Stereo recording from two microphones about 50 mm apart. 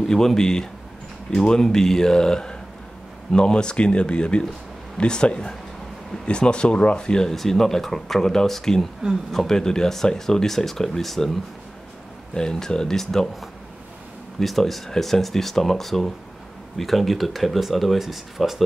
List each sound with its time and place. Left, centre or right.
0.0 s speech: centre
12.4 s speech: centre
14.4 s speech: centre